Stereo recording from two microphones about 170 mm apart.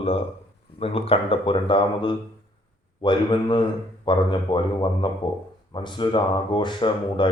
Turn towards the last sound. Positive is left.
turn(degrees=30)  # may be behind; listen again after turning